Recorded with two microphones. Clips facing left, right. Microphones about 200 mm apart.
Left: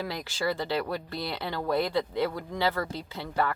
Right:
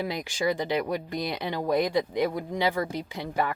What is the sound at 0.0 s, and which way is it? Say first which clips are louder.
Speech: right 3 dB; 15° right (ahead or behind).